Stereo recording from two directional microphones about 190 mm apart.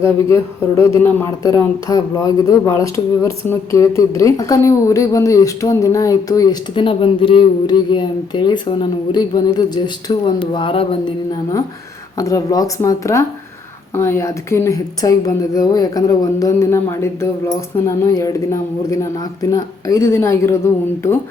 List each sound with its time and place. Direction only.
0.8 s speech: 15° left (ahead or behind)
12.1 s speech: 20° left (ahead or behind)